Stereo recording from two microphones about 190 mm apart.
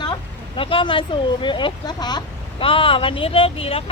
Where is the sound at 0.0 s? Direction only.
25° left (ahead or behind).